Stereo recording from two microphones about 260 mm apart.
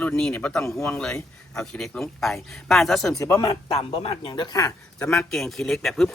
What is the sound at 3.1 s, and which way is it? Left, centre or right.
Speech, centre.